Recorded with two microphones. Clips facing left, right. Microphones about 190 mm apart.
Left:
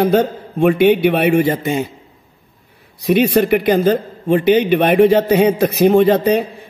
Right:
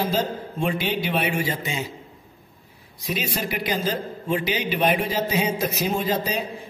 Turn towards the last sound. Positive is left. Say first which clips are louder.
# left 12 dB
turn(degrees=60)  # may be behind; listen again after turning